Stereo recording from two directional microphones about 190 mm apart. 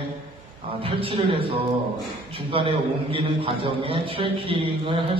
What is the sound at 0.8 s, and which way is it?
Speech, 30° right (ahead or behind).